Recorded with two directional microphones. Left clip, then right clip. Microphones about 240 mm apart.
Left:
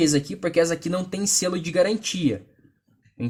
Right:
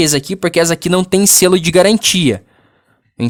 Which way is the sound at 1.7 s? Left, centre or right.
Right.